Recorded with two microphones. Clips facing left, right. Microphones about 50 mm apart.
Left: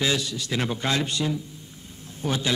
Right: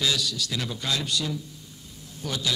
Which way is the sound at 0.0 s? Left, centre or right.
Left.